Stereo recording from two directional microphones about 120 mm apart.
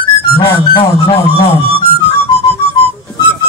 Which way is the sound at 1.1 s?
60° left (ahead or behind).